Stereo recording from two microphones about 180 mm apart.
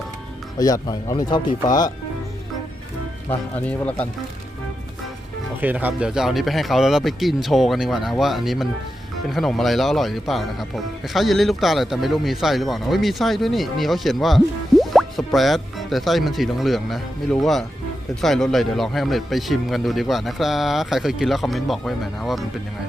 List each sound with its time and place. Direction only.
0.6 s speech: 20° left (ahead or behind)
3.5 s speech: 10° left (ahead or behind)
5.5 s a man's voice: 10° right (ahead or behind)